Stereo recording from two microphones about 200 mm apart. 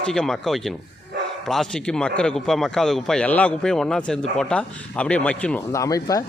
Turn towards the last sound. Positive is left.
turn(degrees=15)  # may be behind; listen again after turning